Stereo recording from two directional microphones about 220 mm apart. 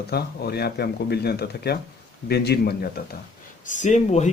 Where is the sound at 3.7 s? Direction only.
35° left (ahead or behind).